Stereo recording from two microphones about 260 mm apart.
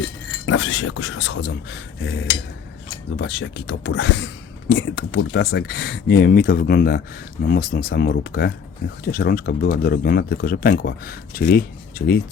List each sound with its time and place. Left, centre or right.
0.4 s speech: left
3.2 s speech: left